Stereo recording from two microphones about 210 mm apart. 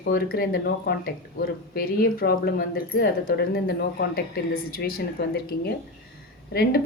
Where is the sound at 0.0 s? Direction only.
45° left (ahead or behind).